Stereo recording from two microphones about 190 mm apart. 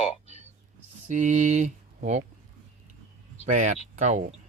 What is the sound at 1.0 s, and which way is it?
Speech, 40° right (ahead or behind).